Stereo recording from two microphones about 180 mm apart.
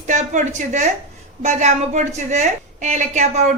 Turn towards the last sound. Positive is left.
turn(degrees=-40)  # may be behind; listen again after turning